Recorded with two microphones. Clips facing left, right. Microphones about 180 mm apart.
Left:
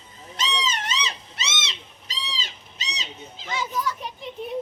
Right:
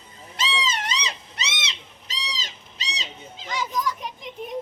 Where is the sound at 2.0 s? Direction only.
40° right (ahead or behind).